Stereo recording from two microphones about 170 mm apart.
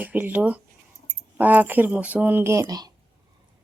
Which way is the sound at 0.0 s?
10° right (ahead or behind).